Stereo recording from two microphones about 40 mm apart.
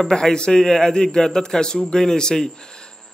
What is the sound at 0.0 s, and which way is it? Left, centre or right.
A man's voice, centre.